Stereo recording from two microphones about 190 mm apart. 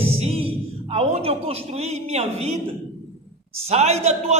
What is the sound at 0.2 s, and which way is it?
A man's voice, 30° right (ahead or behind).